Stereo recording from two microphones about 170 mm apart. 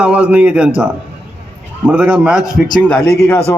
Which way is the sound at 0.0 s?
5° right (ahead or behind).